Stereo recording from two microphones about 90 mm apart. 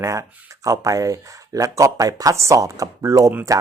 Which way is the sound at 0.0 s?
35° right (ahead or behind).